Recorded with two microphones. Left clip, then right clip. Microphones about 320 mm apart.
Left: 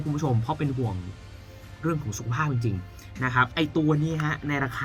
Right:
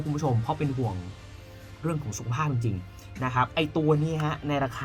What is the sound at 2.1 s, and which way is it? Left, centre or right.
Speech, centre.